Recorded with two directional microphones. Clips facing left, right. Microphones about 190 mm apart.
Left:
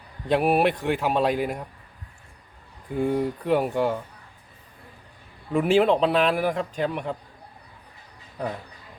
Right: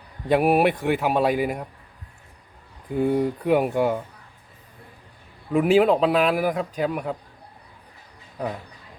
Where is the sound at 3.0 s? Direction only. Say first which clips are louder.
Right 2 dB; 5° right (ahead or behind).